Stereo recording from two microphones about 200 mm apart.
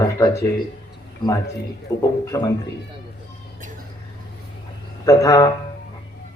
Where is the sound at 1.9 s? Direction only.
15° left (ahead or behind).